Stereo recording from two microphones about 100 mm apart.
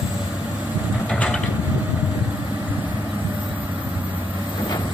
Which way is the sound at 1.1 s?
10° left (ahead or behind).